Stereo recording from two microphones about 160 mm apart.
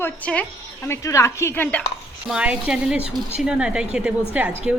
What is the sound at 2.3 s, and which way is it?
A woman's voice, 5° right (ahead or behind).